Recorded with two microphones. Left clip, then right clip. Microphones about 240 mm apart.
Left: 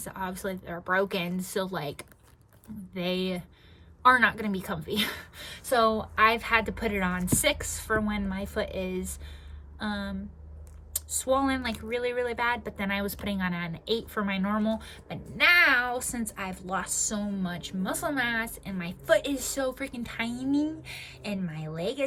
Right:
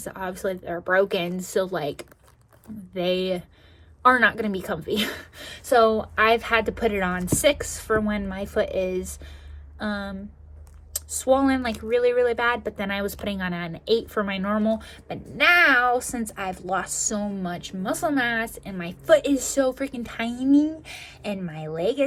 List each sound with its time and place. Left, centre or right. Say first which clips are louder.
0.0 s speech: right 5 dB; centre
11.2 s speech: right 6 dB; centre